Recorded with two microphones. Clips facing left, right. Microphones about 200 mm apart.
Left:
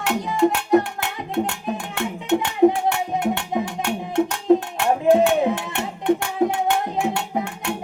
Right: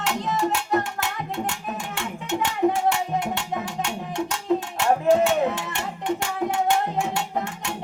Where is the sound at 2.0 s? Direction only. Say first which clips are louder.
Left 6 dB; 60° left (ahead or behind).